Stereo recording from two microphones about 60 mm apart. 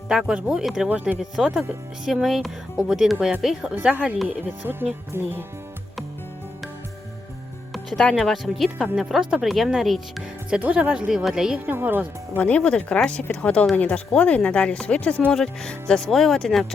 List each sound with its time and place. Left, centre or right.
0.1 s speech: centre
2.2 s speech: centre
3.8 s speech: right
4.6 s speech: right
7.7 s music: centre
8.2 s speech: centre
10.6 s speech: right
11.1 s speech: centre
11.6 s speech: right
12.4 s speech: left
12.6 s speech: centre